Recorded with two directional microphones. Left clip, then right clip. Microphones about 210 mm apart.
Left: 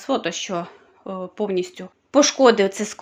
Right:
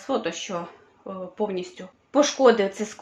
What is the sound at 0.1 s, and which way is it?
Speech, 45° left (ahead or behind).